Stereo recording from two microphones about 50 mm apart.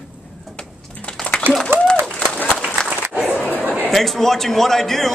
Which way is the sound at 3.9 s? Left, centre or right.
Centre.